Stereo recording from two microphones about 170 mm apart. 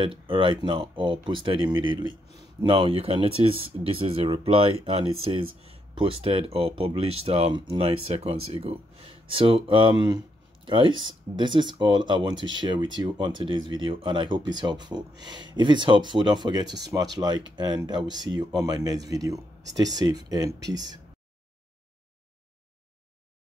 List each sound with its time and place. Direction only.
0.0 s speech: 30° right (ahead or behind)
16.9 s speech: 15° right (ahead or behind)
17.6 s speech: 25° right (ahead or behind)